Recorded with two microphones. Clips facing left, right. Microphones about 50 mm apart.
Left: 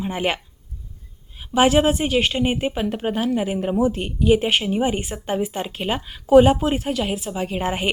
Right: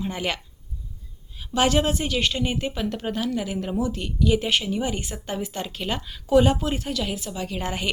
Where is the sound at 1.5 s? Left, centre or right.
Centre.